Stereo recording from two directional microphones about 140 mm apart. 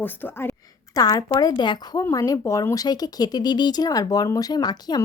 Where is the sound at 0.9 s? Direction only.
25° left (ahead or behind).